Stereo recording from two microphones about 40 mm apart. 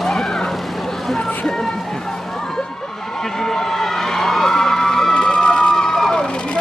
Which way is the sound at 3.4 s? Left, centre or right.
Centre.